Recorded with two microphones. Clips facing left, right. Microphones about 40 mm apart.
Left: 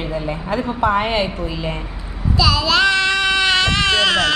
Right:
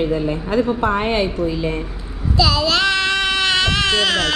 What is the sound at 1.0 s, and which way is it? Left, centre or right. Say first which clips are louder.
Speech: right 1 dB; left.